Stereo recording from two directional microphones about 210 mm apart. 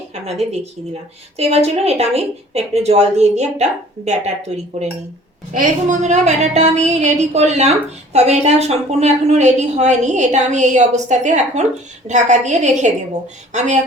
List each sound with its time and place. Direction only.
0.1 s a woman's voice: 30° right (ahead or behind)